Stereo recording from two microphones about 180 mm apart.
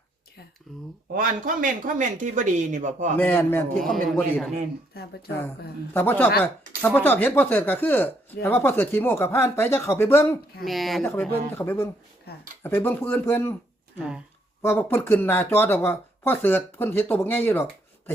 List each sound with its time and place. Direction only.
0.7 s speech: centre (ahead or behind)
1.1 s speech: 50° right (ahead or behind)
3.2 s speech: 10° left (ahead or behind)
5.9 s speech: 10° left (ahead or behind)
10.6 s speech: centre (ahead or behind)
11.1 s speech: 10° left (ahead or behind)
14.6 s speech: 10° left (ahead or behind)